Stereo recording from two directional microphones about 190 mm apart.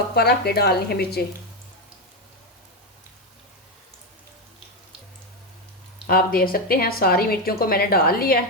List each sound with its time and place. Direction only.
0.1 s a woman's voice: 55° left (ahead or behind)
6.1 s a woman's voice: 50° left (ahead or behind)